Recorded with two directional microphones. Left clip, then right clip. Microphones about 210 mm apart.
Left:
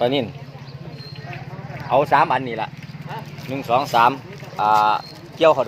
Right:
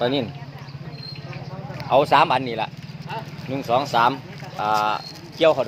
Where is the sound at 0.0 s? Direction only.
10° left (ahead or behind).